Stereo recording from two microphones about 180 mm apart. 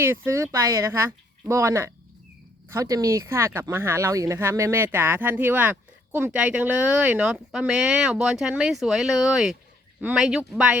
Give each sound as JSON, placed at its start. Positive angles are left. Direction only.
{"t": 0.0, "sound": "speech", "side_deg": -15}